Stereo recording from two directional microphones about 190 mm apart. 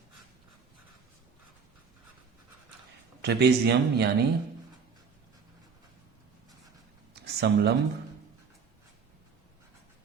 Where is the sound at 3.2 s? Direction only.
60° right (ahead or behind).